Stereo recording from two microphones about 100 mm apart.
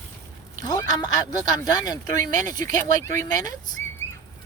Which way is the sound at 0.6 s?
40° left (ahead or behind).